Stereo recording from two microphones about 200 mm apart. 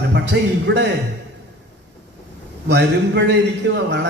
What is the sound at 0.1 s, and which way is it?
Speech, 60° right (ahead or behind).